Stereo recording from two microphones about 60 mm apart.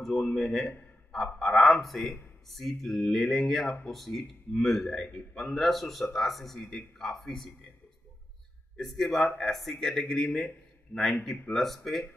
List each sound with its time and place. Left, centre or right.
0.0 s a man's voice: centre
5.0 s speech: centre
5.4 s a man's voice: centre
8.7 s speech: centre
11.5 s a man's voice: centre